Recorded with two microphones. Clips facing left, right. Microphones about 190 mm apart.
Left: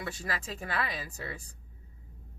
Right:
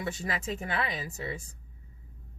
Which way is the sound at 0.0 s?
20° right (ahead or behind).